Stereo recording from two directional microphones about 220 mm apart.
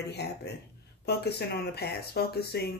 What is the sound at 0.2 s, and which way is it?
Speech, 50° left (ahead or behind).